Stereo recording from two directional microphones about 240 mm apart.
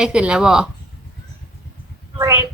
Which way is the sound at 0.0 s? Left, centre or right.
Centre.